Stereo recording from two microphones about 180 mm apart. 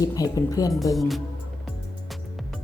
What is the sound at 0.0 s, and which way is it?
Speech, 20° left (ahead or behind).